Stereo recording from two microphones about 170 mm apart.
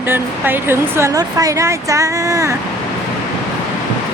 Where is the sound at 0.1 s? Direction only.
15° right (ahead or behind).